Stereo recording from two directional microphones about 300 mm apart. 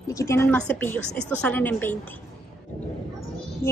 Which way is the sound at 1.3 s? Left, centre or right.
Centre.